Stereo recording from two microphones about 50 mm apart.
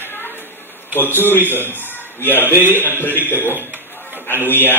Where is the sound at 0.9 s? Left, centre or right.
Left.